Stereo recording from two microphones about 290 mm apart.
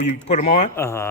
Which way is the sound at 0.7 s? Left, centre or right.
Centre.